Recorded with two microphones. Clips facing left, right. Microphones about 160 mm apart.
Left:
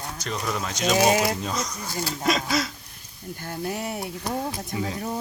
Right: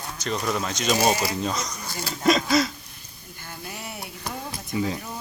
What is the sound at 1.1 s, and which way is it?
Speech, 55° left (ahead or behind).